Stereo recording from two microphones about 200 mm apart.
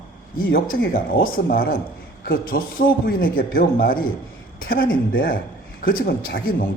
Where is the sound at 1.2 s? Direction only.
45° left (ahead or behind).